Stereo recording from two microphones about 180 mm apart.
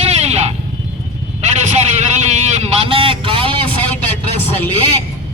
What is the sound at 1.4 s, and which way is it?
Vehicle, 40° right (ahead or behind).